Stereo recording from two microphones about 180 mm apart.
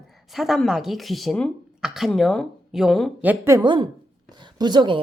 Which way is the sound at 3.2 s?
15° right (ahead or behind).